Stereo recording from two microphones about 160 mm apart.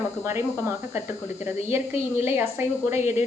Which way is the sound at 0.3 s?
15° right (ahead or behind).